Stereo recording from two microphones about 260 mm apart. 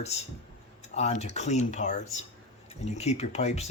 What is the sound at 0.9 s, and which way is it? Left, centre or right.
Speech, left.